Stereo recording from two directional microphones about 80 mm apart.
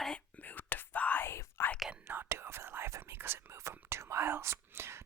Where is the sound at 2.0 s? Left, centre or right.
Right.